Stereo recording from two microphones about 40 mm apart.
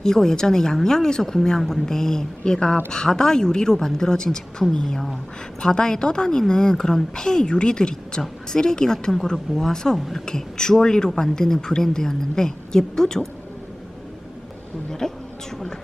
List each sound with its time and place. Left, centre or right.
0.0 s a woman's voice: centre
14.8 s a woman's voice: centre